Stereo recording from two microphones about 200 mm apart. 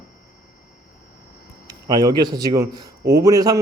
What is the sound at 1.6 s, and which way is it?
A man's voice, 20° right (ahead or behind).